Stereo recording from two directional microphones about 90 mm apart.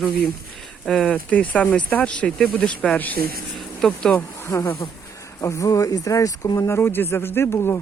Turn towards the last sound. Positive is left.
turn(degrees=30)  # may be behind; listen again after turning